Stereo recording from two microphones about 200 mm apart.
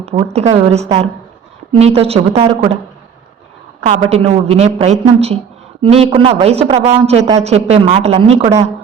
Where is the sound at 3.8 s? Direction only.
35° right (ahead or behind).